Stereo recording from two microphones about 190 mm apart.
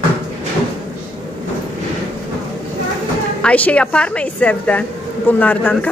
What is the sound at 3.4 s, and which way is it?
A woman's voice, 5° left (ahead or behind).